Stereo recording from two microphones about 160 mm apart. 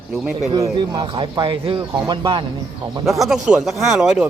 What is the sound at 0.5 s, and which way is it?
Speech, 25° right (ahead or behind).